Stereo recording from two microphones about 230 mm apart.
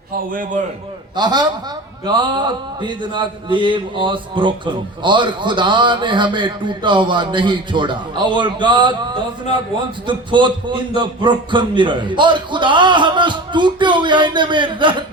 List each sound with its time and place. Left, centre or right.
0.3 s a man's voice: right
1.1 s a man's voice: centre